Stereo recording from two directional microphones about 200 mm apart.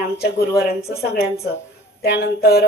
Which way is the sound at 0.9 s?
50° left (ahead or behind).